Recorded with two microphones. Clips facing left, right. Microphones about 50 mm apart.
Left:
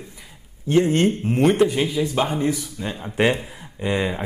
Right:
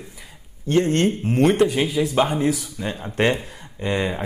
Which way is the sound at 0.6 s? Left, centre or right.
Centre.